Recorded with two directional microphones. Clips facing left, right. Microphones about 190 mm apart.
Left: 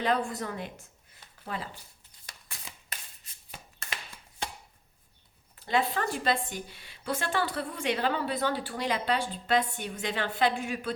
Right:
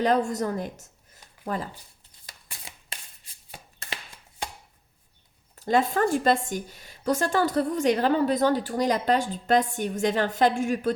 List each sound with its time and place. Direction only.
0.0 s a woman's voice: 40° right (ahead or behind)
5.5 s a woman's voice: 45° right (ahead or behind)